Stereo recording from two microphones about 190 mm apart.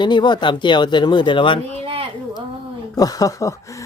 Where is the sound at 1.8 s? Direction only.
30° right (ahead or behind).